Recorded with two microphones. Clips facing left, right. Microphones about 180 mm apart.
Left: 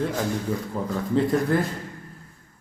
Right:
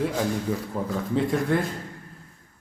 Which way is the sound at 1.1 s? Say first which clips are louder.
Left 2 dB; centre (ahead or behind).